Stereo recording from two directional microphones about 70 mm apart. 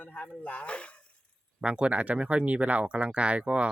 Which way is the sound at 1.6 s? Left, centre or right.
Centre.